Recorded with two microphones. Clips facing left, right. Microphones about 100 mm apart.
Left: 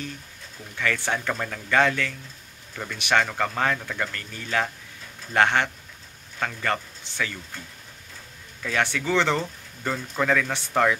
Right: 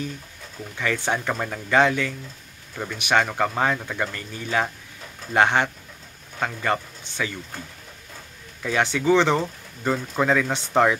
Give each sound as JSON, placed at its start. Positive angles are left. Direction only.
{"t": 0.7, "sound": "speech", "side_deg": -15}
{"t": 8.6, "sound": "speech", "side_deg": -15}